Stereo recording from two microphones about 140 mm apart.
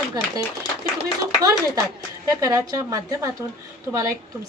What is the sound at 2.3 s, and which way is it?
Speech, 25° right (ahead or behind).